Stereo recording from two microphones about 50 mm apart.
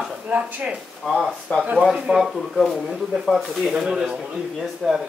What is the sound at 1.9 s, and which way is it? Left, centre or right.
Speech, centre.